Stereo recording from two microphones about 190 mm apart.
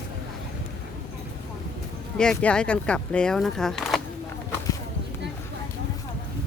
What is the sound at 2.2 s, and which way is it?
Speech, 5° left (ahead or behind).